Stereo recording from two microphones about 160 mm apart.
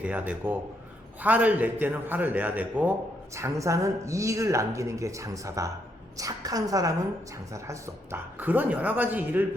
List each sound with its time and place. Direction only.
0.0 s speech: 10° right (ahead or behind)